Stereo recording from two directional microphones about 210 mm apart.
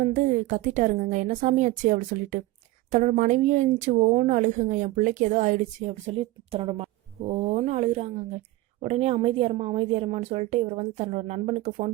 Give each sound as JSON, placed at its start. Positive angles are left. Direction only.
{"t": 0.0, "sound": "a woman's voice", "side_deg": -40}